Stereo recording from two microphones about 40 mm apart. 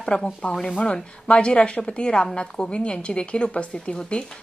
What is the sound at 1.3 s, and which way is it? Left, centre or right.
A woman's voice, left.